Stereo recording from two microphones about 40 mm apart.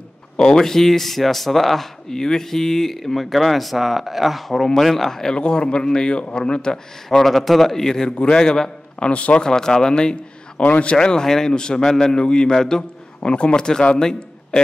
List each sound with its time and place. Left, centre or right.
0.4 s speech: centre
2.0 s a man's voice: centre
5.4 s a man's voice: left
7.2 s a man's voice: centre
8.1 s a man's voice: left
8.4 s a man's voice: centre
9.1 s a man's voice: left
9.4 s a man's voice: centre
13.3 s a man's voice: left
13.7 s a man's voice: centre